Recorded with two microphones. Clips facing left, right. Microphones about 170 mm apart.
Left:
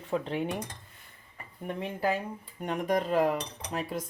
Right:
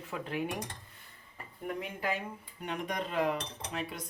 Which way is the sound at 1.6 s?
30° left (ahead or behind).